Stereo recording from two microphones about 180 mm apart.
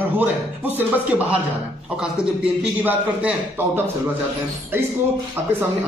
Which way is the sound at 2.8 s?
10° right (ahead or behind).